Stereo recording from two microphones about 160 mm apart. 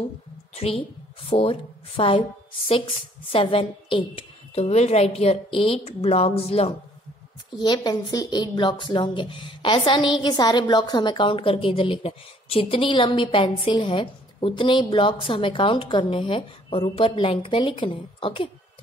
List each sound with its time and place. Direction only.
0.6 s a woman's voice: 40° left (ahead or behind)
7.5 s a woman's voice: 25° left (ahead or behind)